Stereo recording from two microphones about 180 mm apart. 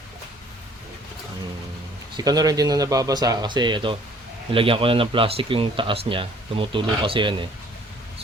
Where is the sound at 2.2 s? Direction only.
20° right (ahead or behind).